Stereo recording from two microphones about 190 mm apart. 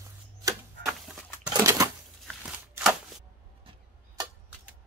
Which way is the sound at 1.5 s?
15° right (ahead or behind).